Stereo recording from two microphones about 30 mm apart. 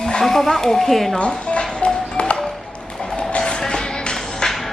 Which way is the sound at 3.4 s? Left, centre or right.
Left.